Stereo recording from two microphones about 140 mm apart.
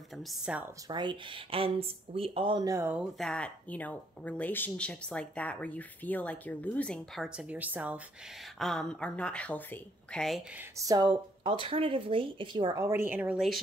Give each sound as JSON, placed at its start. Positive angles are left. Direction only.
{"t": 0.5, "sound": "speech", "side_deg": -5}
{"t": 0.8, "sound": "speech", "side_deg": -30}
{"t": 2.7, "sound": "speech", "side_deg": -15}
{"t": 3.2, "sound": "speech", "side_deg": 5}
{"t": 7.3, "sound": "speech", "side_deg": -10}
{"t": 8.5, "sound": "a woman's voice", "side_deg": 0}
{"t": 10.8, "sound": "speech", "side_deg": -25}
{"t": 12.7, "sound": "speech", "side_deg": -20}